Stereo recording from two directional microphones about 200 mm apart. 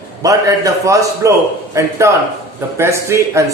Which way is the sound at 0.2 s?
15° right (ahead or behind).